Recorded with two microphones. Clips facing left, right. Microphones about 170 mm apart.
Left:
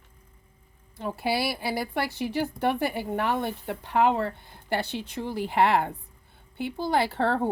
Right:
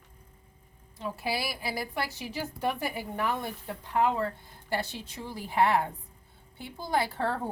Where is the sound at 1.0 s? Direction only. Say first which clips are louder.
Left 5 dB; 65° left (ahead or behind).